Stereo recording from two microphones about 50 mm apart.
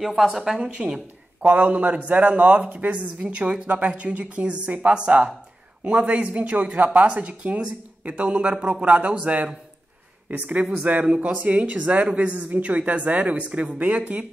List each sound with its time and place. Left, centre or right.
0.0 s a woman's voice: centre
1.4 s a man's voice: right